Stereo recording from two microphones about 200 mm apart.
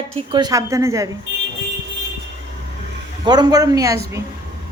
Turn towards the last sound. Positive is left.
turn(degrees=-15)  # may be behind; listen again after turning